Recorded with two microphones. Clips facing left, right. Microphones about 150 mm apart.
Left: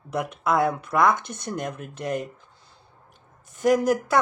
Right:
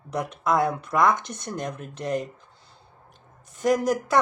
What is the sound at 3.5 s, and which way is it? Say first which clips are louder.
Speech: left 2 dB; centre (ahead or behind).